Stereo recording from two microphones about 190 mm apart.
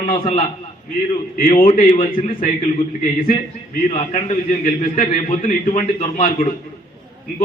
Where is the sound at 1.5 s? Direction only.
30° left (ahead or behind).